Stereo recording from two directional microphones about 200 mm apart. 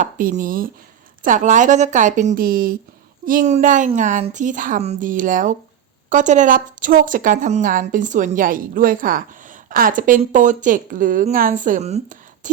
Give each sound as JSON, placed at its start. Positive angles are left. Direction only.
{"t": 0.0, "sound": "a woman's voice", "side_deg": -45}